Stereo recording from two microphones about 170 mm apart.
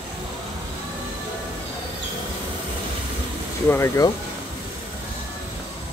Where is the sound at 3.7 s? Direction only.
15° left (ahead or behind).